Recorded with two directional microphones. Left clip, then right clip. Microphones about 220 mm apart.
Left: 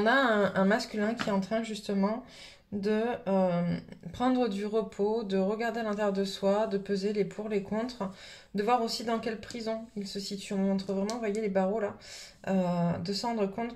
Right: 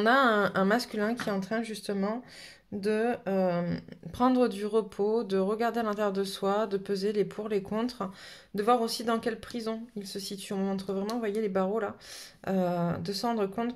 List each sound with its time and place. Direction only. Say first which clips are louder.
0.0 s speech: right 2 dB; 40° right (ahead or behind)